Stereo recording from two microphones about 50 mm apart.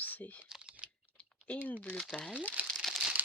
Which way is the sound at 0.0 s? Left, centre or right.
Left.